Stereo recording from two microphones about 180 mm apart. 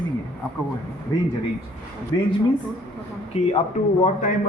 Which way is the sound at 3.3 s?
35° left (ahead or behind).